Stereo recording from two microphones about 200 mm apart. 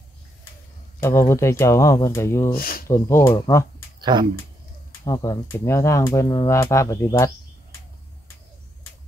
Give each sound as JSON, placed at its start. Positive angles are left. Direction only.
{"t": 1.0, "sound": "speech", "side_deg": 15}
{"t": 2.5, "sound": "speech", "side_deg": 45}
{"t": 2.9, "sound": "speech", "side_deg": 15}
{"t": 4.0, "sound": "speech", "side_deg": -20}
{"t": 5.0, "sound": "speech", "side_deg": 15}